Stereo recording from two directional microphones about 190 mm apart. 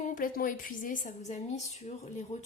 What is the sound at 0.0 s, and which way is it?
A woman's voice, 45° left (ahead or behind).